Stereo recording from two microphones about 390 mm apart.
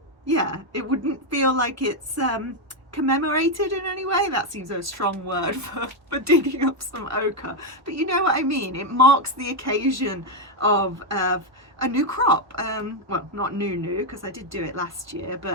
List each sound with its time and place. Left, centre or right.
0.3 s a woman's voice: right
11.8 s a woman's voice: right